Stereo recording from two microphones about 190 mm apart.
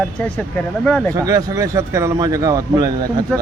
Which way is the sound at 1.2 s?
20° right (ahead or behind).